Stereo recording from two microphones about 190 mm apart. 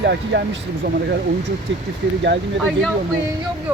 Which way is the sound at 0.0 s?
65° right (ahead or behind).